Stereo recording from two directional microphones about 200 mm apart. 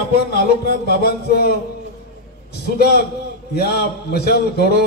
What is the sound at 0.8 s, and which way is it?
Speech, 50° left (ahead or behind).